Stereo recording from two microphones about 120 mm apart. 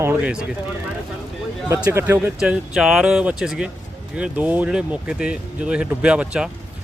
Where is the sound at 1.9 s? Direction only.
20° right (ahead or behind).